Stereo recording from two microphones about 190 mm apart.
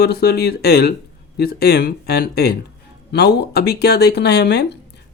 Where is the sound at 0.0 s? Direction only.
55° left (ahead or behind).